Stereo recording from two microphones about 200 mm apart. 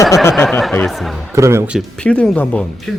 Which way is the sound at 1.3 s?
15° right (ahead or behind).